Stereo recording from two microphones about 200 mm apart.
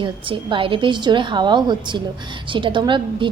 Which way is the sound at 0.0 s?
25° right (ahead or behind).